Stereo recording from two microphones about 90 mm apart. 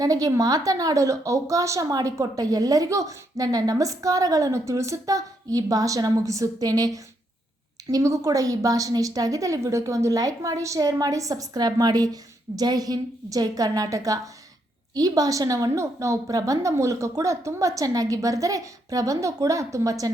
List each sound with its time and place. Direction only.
0.0 s a woman's voice: 40° right (ahead or behind)